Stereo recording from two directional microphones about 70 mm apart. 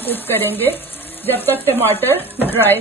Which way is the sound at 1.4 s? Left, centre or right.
Right.